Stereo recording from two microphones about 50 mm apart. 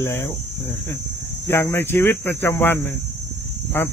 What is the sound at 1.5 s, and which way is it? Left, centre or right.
Speech, left.